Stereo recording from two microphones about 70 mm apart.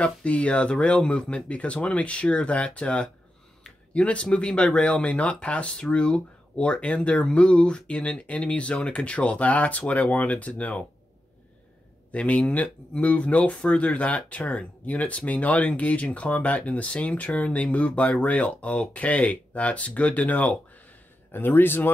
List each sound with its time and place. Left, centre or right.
0.0 s speech: centre
12.1 s speech: centre
21.3 s speech: left